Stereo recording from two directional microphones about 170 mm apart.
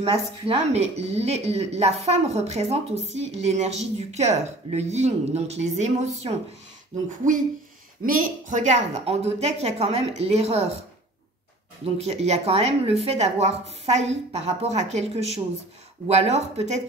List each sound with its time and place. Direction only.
0.0 s a woman's voice: 35° right (ahead or behind)
7.2 s hoot: 50° right (ahead or behind)
8.0 s a woman's voice: 55° right (ahead or behind); by 10.8 s 35° right (ahead or behind)
11.8 s a woman's voice: 40° right (ahead or behind)